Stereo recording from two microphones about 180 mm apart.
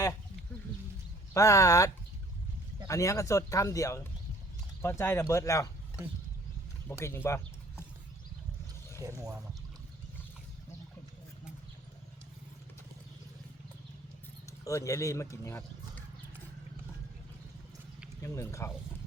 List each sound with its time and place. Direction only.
1.3 s speech: 15° left (ahead or behind)
6.8 s speech: 15° left (ahead or behind)
9.0 s speech: 20° right (ahead or behind)
14.6 s speech: 15° left (ahead or behind)
18.2 s speech: 15° left (ahead or behind)